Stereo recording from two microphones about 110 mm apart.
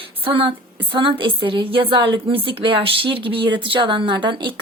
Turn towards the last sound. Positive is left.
turn(degrees=-45)  # may be behind; listen again after turning